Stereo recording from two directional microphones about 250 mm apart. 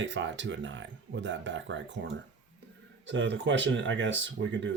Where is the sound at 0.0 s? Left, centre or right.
Right.